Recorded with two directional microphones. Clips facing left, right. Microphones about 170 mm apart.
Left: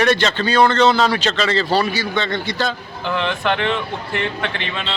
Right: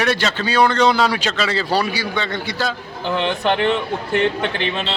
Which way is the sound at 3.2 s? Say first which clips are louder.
Right 2 dB; 35° right (ahead or behind).